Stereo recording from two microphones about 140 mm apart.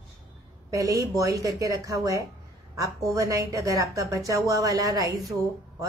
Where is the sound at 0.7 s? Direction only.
25° right (ahead or behind).